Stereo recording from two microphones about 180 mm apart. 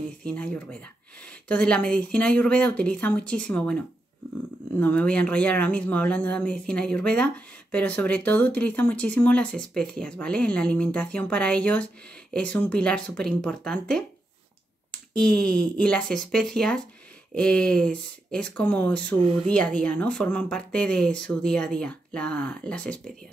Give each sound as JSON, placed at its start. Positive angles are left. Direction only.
{"t": 0.2, "sound": "speech", "side_deg": 5}
{"t": 15.1, "sound": "speech", "side_deg": 5}